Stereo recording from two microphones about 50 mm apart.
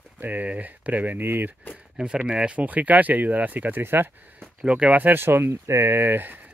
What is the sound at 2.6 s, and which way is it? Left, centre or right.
Speech, right.